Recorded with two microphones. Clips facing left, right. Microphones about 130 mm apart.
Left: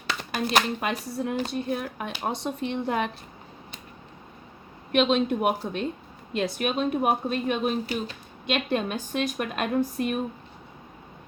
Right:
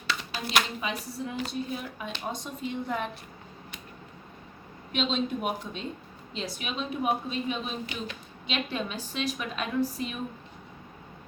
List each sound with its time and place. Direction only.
0.1 s speech: 50° left (ahead or behind)
2.4 s speech: 75° left (ahead or behind)
4.9 s speech: 60° left (ahead or behind)
7.9 s speech: 40° left (ahead or behind)
8.4 s speech: 55° left (ahead or behind)